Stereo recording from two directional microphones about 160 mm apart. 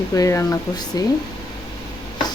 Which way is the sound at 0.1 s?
20° left (ahead or behind).